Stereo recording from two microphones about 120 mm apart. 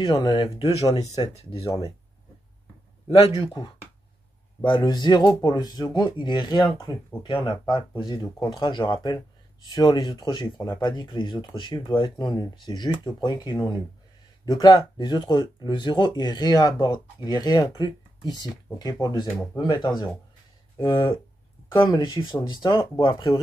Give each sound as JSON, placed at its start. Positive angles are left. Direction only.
{"t": 0.0, "sound": "speech", "side_deg": 40}
{"t": 0.8, "sound": "speech", "side_deg": 65}
{"t": 1.6, "sound": "speech", "side_deg": 30}
{"t": 3.1, "sound": "speech", "side_deg": 55}
{"t": 4.6, "sound": "speech", "side_deg": 40}